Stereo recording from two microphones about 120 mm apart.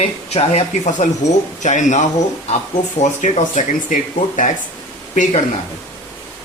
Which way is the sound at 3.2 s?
90° left.